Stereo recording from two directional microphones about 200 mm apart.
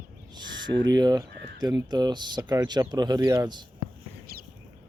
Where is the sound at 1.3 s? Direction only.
60° right (ahead or behind).